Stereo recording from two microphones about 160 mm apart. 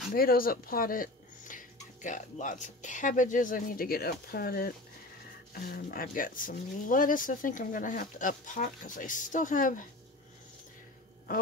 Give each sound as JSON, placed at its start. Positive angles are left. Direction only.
{"t": 0.1, "sound": "speech", "side_deg": 65}